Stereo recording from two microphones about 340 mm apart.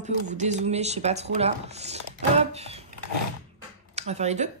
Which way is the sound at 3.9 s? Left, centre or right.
Centre.